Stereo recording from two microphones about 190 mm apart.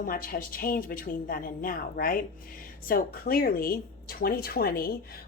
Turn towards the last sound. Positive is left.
turn(degrees=50)  # may be behind; listen again after turning